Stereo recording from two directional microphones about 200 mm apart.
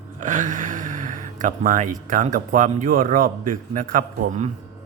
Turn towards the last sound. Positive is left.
turn(degrees=-40)  # may be behind; listen again after turning